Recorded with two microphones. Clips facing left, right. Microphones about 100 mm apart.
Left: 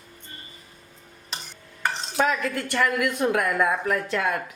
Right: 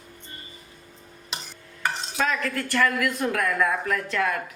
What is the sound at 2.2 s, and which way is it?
Speech, 20° left (ahead or behind).